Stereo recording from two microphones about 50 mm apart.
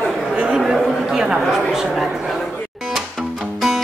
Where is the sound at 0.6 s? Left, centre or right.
Centre.